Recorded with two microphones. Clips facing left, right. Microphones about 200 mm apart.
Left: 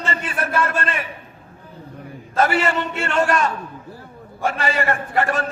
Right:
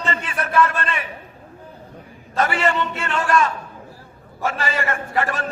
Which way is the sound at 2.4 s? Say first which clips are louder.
Even; 40° left (ahead or behind).